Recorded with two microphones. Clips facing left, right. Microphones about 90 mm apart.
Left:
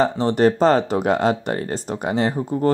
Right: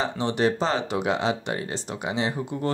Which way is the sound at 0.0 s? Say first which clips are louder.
Left 7 dB; 45° left (ahead or behind).